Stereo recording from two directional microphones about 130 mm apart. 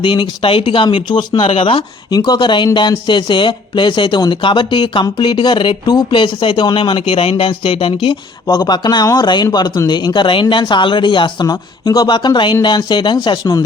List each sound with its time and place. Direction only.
0.0 s speech: 35° left (ahead or behind)